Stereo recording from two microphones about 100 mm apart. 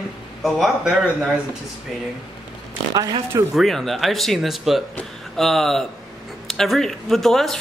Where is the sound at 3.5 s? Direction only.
Centre (ahead or behind).